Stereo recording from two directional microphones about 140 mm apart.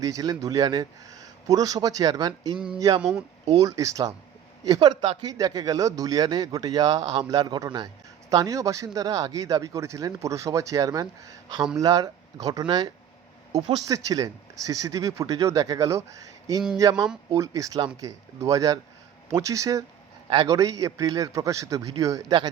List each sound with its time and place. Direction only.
0.0 s speech: 25° right (ahead or behind)
3.0 s speech: 5° right (ahead or behind)
3.6 s speech: 25° right (ahead or behind)